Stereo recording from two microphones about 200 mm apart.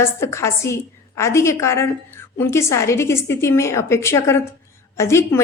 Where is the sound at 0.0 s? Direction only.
15° left (ahead or behind).